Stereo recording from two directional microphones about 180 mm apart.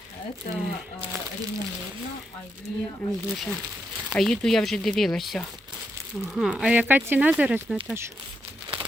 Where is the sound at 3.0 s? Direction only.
Centre (ahead or behind).